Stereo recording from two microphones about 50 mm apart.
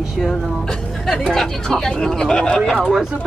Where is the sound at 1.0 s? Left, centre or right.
Centre.